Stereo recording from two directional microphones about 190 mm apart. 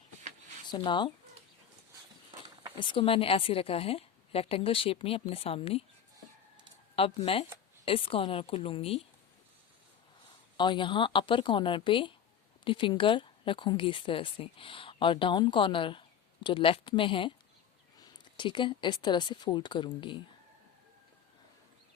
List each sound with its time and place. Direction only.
0.7 s speech: 25° left (ahead or behind)
2.7 s speech: 25° left (ahead or behind)
6.9 s speech: 30° left (ahead or behind)
10.6 s speech: 25° left (ahead or behind)